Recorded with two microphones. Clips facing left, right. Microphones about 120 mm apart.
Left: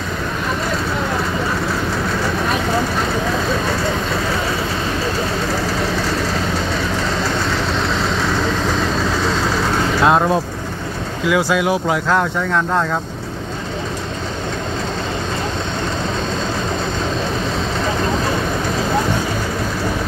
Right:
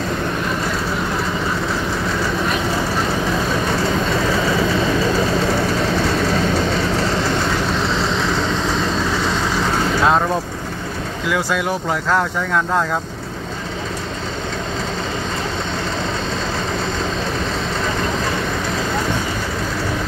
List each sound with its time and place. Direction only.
10.0 s speech: 5° left (ahead or behind)
12.1 s speech: centre (ahead or behind)